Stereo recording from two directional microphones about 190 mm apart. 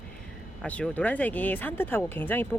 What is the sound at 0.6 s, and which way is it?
Speech, 5° left (ahead or behind).